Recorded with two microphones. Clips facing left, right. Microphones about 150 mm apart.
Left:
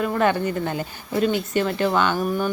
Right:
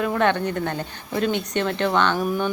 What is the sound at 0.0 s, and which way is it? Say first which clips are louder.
Speech: even; centre (ahead or behind).